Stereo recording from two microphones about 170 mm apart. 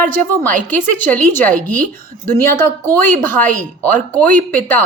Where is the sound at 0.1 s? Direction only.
10° left (ahead or behind).